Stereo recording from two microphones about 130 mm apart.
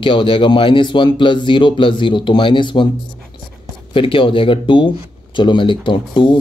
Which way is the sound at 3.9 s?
40° left (ahead or behind).